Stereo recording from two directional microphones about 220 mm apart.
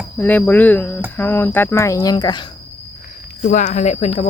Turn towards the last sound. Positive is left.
turn(degrees=30)  # may be behind; listen again after turning